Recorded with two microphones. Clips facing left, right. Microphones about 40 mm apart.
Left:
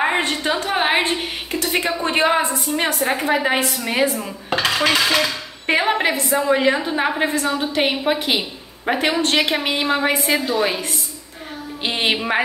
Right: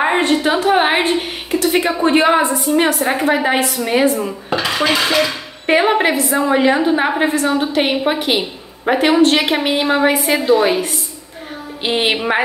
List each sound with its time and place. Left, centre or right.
0.0 s a sound: centre
0.5 s a woman's voice: centre
4.2 s dishes: centre
5.1 s a woman's voice: centre